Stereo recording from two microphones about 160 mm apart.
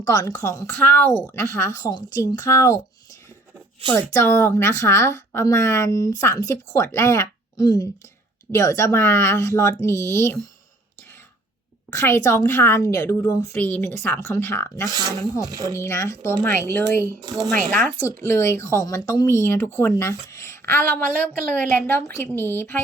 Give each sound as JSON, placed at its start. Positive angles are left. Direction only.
{"t": 0.1, "sound": "a woman's voice", "side_deg": 20}
{"t": 4.1, "sound": "a woman's voice", "side_deg": 15}
{"t": 11.9, "sound": "a woman's voice", "side_deg": 15}
{"t": 13.5, "sound": "a woman's voice", "side_deg": 10}
{"t": 14.8, "sound": "speech", "side_deg": -25}
{"t": 15.8, "sound": "a woman's voice", "side_deg": 15}
{"t": 17.2, "sound": "speech", "side_deg": -25}
{"t": 17.5, "sound": "a woman's voice", "side_deg": 10}